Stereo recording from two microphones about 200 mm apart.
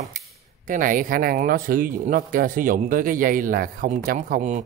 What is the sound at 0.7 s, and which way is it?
A man's voice, 40° right (ahead or behind).